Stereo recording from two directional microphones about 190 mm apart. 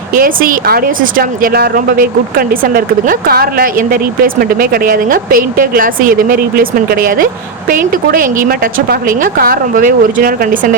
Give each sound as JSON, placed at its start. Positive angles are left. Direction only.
{"t": 0.1, "sound": "a woman's voice", "side_deg": -45}